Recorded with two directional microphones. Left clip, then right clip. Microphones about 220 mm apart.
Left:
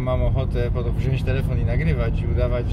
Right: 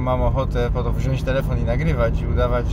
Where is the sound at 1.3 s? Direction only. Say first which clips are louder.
Right 5 dB; 10° right (ahead or behind).